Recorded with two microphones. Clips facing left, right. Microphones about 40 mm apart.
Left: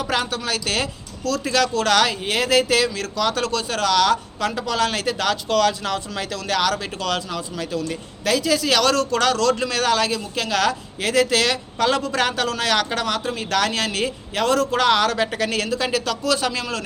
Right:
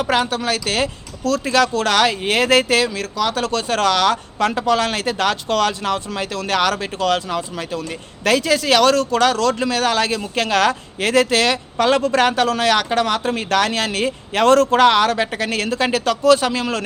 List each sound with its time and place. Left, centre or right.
0.1 s speech: right
2.2 s speech: right
2.7 s speech: right
3.2 s speech: centre
3.4 s speech: right
8.2 s speech: right
10.1 s speech: right
14.3 s speech: right
14.8 s speech: right
15.7 s speech: right